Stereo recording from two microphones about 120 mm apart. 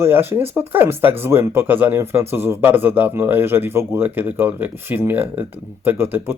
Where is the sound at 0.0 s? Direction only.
20° right (ahead or behind).